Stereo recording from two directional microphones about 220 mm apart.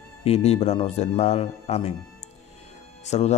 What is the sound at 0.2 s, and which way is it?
Speech, 25° left (ahead or behind).